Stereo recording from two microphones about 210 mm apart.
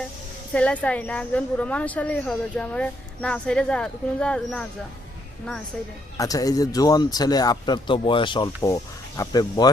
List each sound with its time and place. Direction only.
0.5 s a woman's voice: 5° left (ahead or behind)
6.1 s speech: 15° left (ahead or behind)